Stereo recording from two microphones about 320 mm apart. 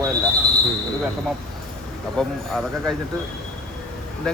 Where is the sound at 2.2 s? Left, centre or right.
Centre.